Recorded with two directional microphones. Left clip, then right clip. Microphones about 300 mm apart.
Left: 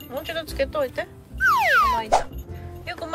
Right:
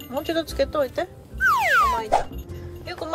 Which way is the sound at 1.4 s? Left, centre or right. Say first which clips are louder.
Left 1 dB; centre.